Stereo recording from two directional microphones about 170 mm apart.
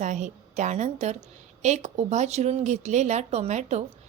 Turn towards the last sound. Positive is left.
turn(degrees=-40)  # may be behind; listen again after turning